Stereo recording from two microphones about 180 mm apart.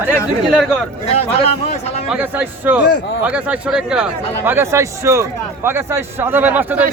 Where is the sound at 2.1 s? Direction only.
10° right (ahead or behind).